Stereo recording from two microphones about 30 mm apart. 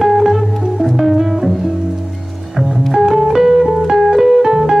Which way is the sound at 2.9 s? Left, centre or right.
Centre.